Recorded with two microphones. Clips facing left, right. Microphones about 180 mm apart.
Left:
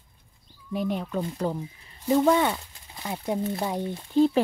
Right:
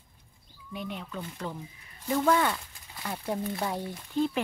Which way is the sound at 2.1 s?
25° left (ahead or behind).